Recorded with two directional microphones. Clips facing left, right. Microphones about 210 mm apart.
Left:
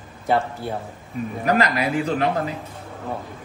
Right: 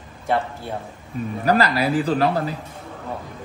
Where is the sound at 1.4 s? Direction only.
35° right (ahead or behind).